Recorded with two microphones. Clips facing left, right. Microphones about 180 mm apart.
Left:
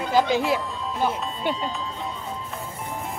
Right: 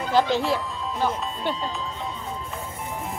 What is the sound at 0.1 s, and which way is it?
Speech, 5° left (ahead or behind).